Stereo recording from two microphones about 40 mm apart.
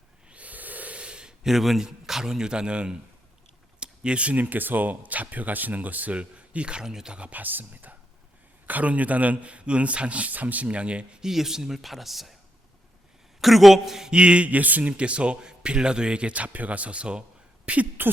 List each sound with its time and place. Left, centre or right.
0.3 s a sound: right
0.9 s a sound: right
1.5 s a man's voice: centre; by 2.9 s right
3.8 s computer keyboard: right
4.4 s speech: right
6.8 s a man's voice: centre
7.2 s a man's voice: right
11.2 s a man's voice: centre
13.4 s a man's voice: centre
14.1 s a man's voice: right